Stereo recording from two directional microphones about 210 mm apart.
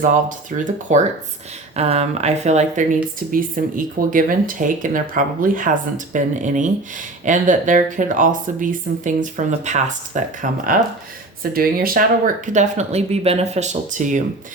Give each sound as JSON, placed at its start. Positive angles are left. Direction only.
{"t": 0.0, "sound": "speech", "side_deg": -40}
{"t": 12.5, "sound": "speech", "side_deg": -30}